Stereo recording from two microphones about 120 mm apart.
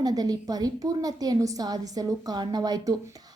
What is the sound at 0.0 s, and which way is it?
A woman's voice, 30° right (ahead or behind).